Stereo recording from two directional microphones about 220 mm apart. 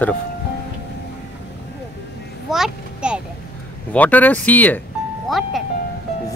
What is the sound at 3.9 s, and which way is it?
Speech, 5° left (ahead or behind).